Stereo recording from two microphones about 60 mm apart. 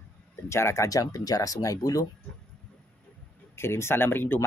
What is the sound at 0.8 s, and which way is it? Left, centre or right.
Speech, left.